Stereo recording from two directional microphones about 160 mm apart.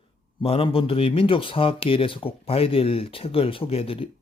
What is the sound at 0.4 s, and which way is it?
A man's voice, 35° left (ahead or behind).